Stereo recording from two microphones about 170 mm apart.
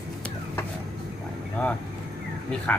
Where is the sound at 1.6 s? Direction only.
5° left (ahead or behind).